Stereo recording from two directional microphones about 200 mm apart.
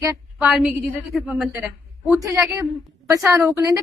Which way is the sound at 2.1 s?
15° right (ahead or behind).